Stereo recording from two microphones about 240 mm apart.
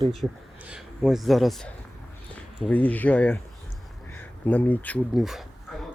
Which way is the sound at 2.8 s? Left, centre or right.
Centre.